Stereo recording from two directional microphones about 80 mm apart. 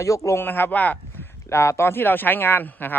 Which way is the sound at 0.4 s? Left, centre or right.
Left.